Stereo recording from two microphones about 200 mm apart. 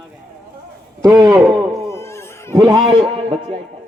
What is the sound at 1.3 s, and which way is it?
Speech, centre (ahead or behind).